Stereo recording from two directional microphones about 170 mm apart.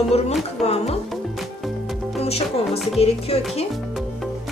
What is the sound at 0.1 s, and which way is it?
Speech, 35° left (ahead or behind).